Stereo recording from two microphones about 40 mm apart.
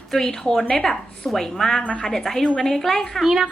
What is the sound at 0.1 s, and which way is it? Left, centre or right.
A woman's voice, centre.